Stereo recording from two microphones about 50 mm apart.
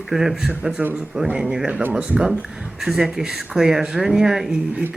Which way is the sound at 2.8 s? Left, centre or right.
Centre.